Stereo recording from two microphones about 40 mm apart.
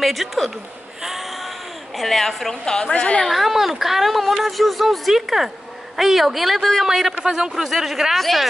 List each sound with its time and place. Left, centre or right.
0.0 s speech: centre
2.0 s a woman's voice: centre
2.9 s a woman's voice: left
3.3 s a man's voice: centre